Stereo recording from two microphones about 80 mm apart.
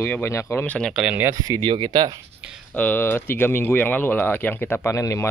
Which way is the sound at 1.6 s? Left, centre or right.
Right.